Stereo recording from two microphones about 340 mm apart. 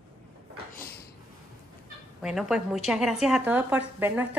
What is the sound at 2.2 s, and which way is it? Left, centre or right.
A woman's voice, centre.